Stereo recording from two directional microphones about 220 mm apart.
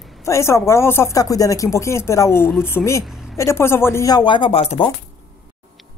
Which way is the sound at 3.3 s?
10° left (ahead or behind).